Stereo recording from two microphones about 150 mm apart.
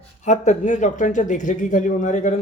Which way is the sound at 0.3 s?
55° left (ahead or behind).